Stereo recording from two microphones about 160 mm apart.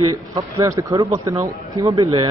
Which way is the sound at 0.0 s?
20° right (ahead or behind).